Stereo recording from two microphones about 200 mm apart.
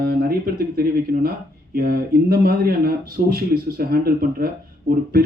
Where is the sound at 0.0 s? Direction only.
50° right (ahead or behind).